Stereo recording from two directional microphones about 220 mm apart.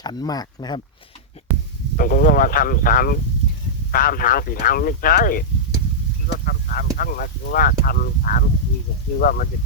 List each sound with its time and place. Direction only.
0.0 s speech: 20° left (ahead or behind)
2.0 s speech: 40° left (ahead or behind)